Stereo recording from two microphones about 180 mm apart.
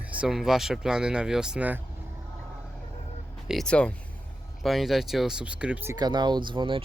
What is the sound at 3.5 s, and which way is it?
Speech, 5° left (ahead or behind).